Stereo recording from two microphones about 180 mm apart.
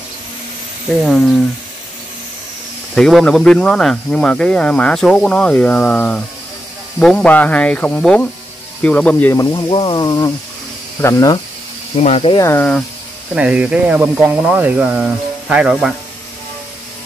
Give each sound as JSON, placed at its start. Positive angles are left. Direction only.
{"t": 1.0, "sound": "speech", "side_deg": 0}
{"t": 2.9, "sound": "speech", "side_deg": 0}
{"t": 12.0, "sound": "speech", "side_deg": 35}
{"t": 12.4, "sound": "speech", "side_deg": 15}
{"t": 13.3, "sound": "speech", "side_deg": -5}